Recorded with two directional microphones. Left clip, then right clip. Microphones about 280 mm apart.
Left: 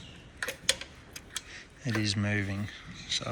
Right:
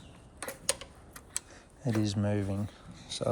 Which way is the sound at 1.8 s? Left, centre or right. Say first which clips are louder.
Left 1 dB; centre.